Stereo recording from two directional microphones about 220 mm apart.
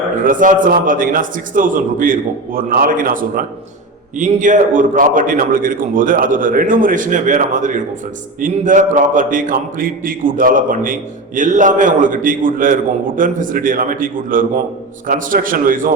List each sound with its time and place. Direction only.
0.3 s a man's voice: 35° right (ahead or behind)